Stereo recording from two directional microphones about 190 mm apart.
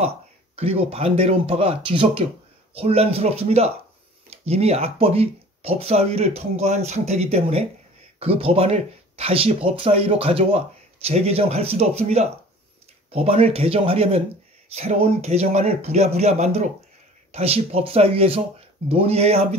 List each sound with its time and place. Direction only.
0.6 s speech: 30° right (ahead or behind)